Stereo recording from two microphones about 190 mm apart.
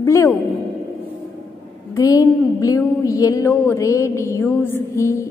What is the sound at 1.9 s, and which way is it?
A woman's voice, 20° left (ahead or behind).